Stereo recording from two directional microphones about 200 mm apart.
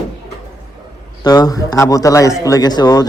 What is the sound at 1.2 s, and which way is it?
A man's voice, 20° left (ahead or behind).